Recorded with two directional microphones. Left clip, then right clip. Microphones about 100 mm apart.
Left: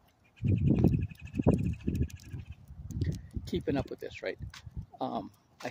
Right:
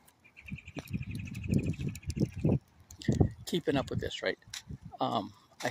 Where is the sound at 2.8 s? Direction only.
35° left (ahead or behind).